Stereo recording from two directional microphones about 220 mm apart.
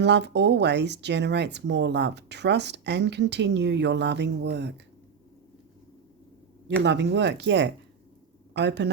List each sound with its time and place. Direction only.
0.0 s speech: 50° right (ahead or behind)
6.8 s speech: 50° right (ahead or behind)